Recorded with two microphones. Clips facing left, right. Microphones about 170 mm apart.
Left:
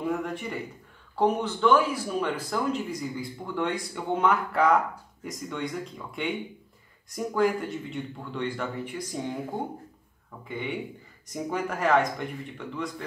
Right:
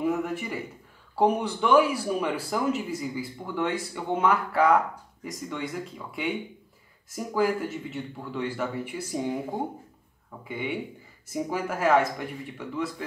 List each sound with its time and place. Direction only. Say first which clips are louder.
0.0 s speech: right 2 dB; 5° right (ahead or behind)
10.5 s speech: right 1 dB; 10° right (ahead or behind)